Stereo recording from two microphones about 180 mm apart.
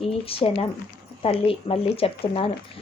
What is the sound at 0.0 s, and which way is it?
A woman's voice, 30° left (ahead or behind).